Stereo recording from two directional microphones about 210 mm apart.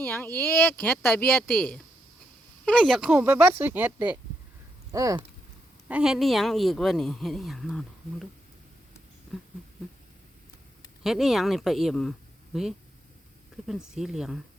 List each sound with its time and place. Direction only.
0.0 s speech: 10° left (ahead or behind); by 5.2 s 15° right (ahead or behind)
5.9 s a woman's voice: 5° right (ahead or behind)
11.0 s a woman's voice: centre (ahead or behind)
13.7 s a woman's voice: centre (ahead or behind)